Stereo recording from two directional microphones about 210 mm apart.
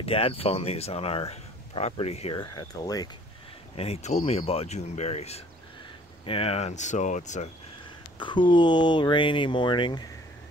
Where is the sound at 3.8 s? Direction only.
30° left (ahead or behind).